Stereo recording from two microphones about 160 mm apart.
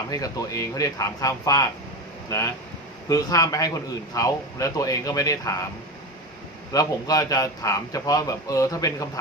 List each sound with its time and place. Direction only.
0.1 s a man's voice: 20° left (ahead or behind)
6.7 s a man's voice: 20° left (ahead or behind)